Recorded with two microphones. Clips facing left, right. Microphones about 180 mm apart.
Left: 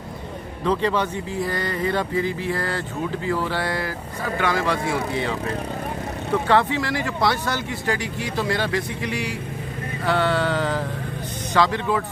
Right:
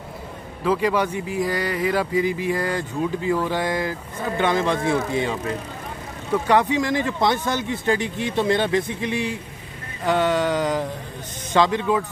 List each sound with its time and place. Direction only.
0.7 s speech: 10° right (ahead or behind)
6.4 s speech: 15° right (ahead or behind)